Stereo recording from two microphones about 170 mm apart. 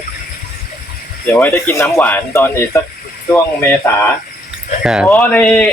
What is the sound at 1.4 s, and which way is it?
Speech, 10° left (ahead or behind).